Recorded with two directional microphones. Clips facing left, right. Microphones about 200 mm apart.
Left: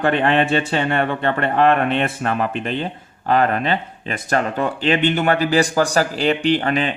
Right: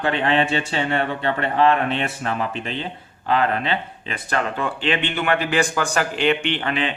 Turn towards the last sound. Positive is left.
turn(degrees=40)  # may be behind; listen again after turning